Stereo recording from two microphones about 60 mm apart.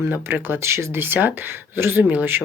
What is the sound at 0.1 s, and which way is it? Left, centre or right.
Speech, right.